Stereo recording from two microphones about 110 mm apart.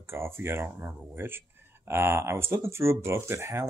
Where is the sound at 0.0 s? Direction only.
20° right (ahead or behind).